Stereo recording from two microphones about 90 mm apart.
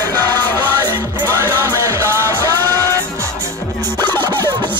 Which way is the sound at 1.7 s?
30° right (ahead or behind).